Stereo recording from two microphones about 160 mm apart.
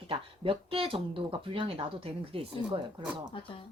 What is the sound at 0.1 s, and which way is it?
Speech, 35° right (ahead or behind).